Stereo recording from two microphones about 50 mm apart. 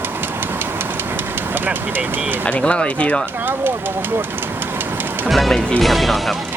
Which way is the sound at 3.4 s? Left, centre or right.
Right.